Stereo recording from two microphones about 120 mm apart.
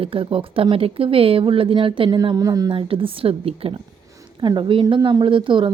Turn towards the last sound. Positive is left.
turn(degrees=-45)  # may be behind; listen again after turning